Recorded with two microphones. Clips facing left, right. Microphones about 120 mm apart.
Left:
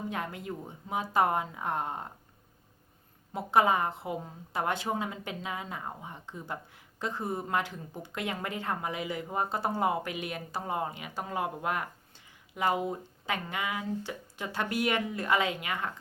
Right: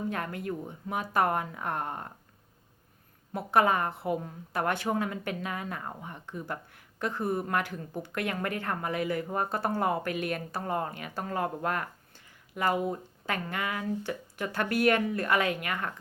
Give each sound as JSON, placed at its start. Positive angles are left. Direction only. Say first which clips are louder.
{"t": 0.1, "sound": "speech", "louder": "right 2 dB", "side_deg": 20}
{"t": 3.3, "sound": "speech", "louder": "even", "side_deg": 20}